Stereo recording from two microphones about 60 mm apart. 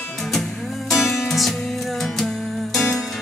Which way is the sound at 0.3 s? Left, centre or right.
Centre.